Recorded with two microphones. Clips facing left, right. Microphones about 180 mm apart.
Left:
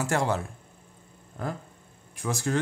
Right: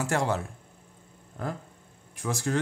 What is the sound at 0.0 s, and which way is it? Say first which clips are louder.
Speech: left 1 dB; 35° left (ahead or behind).